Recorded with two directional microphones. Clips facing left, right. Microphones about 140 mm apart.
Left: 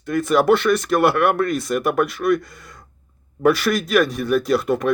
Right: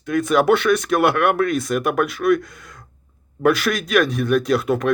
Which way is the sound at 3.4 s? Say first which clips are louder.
Left 1 dB; centre (ahead or behind).